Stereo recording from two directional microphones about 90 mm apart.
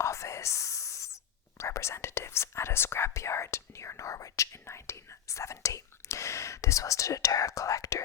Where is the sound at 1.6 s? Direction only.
30° left (ahead or behind).